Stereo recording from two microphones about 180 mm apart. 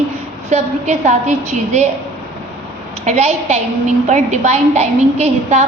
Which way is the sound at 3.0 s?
35° right (ahead or behind).